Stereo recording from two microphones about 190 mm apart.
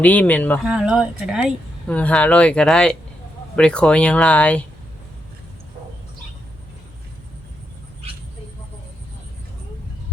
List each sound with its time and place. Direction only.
0.0 s speech: 10° left (ahead or behind)
0.6 s speech: 5° right (ahead or behind)